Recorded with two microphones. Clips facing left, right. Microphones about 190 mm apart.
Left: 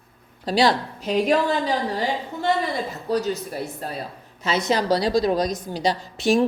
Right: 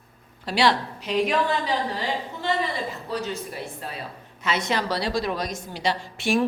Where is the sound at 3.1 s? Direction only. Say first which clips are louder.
Left 8 dB; 40° left (ahead or behind).